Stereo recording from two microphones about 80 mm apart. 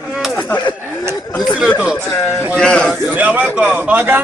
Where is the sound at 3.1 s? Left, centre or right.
Right.